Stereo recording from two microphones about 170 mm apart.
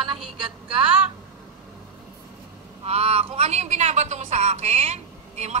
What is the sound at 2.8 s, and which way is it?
A woman's voice, 35° right (ahead or behind).